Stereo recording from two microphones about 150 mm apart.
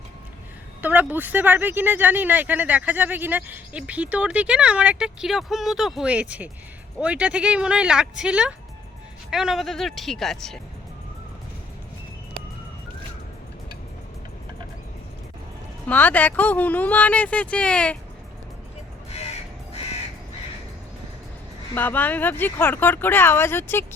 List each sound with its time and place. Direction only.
0.8 s speech: 10° right (ahead or behind)
15.9 s speech: 10° left (ahead or behind)
19.1 s crow: 45° left (ahead or behind)
21.8 s speech: 10° left (ahead or behind)